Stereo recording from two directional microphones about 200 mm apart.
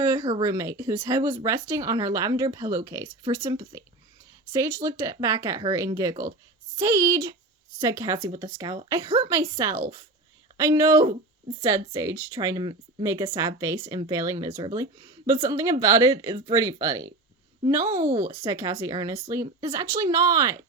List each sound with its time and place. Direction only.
0.0 s speech: 20° right (ahead or behind)
8.3 s speech: 30° right (ahead or behind)